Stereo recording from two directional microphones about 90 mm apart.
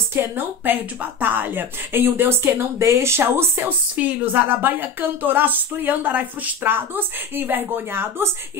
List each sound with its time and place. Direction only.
0.1 s a woman's voice: 25° right (ahead or behind)